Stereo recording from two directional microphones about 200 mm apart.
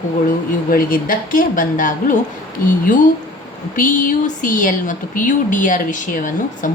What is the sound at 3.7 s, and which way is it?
Speech, 40° left (ahead or behind).